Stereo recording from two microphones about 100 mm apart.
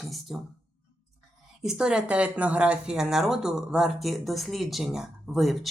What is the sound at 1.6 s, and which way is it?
Speech, 5° right (ahead or behind).